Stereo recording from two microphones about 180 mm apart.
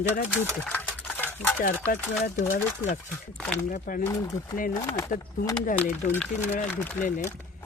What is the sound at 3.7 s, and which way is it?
Speech, 50° left (ahead or behind).